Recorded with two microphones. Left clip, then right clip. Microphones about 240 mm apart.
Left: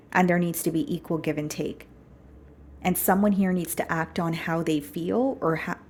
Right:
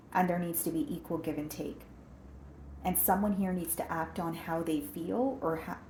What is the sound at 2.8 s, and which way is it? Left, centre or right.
A woman's voice, left.